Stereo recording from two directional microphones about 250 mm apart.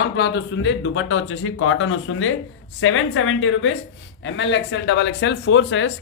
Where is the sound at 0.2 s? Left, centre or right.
Left.